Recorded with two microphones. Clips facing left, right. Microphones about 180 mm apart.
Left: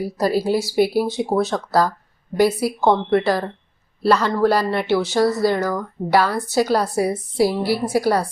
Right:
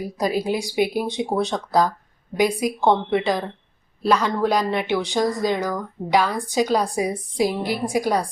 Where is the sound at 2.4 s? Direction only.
15° right (ahead or behind).